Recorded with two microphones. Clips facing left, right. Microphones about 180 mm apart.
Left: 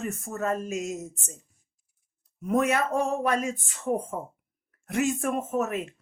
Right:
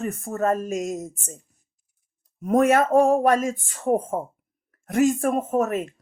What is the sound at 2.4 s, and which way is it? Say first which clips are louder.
A woman's voice: right 6 dB; 45° right (ahead or behind).